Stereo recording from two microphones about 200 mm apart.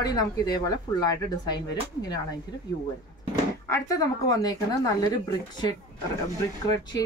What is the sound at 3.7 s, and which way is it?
Speech, 15° left (ahead or behind).